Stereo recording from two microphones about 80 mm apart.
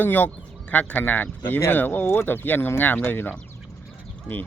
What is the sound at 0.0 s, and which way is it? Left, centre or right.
Speech, left.